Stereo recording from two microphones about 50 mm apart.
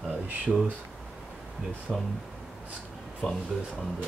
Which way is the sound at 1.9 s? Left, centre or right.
Centre.